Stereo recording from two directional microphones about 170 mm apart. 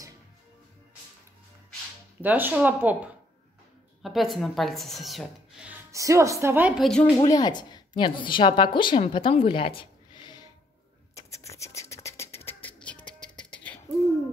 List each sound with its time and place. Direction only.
2.2 s speech: 10° right (ahead or behind)
5.9 s speech: 20° right (ahead or behind)
6.8 s speech: 5° left (ahead or behind)
7.2 s a woman's voice: 25° left (ahead or behind)
11.1 s music: 20° left (ahead or behind)